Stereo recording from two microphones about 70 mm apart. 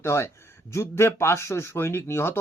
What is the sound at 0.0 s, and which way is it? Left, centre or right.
Speech, left.